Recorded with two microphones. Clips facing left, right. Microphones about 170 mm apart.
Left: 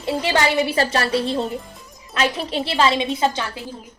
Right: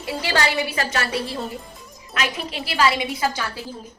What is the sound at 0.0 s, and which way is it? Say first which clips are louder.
A woman's voice: left 3 dB; 20° left (ahead or behind).